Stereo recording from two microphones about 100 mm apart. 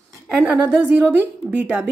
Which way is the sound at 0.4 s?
10° right (ahead or behind).